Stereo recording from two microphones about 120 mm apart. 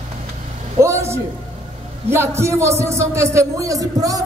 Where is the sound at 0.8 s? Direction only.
20° right (ahead or behind).